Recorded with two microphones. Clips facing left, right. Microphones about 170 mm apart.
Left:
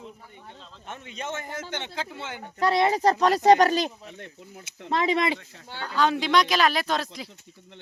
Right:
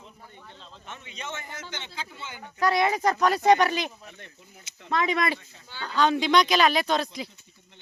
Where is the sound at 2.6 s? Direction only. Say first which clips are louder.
Left 2 dB; 25° left (ahead or behind).